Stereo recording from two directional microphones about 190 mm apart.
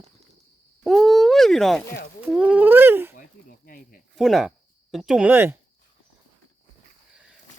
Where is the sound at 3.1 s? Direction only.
50° left (ahead or behind).